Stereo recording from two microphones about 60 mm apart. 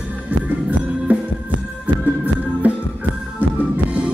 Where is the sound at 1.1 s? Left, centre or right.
Right.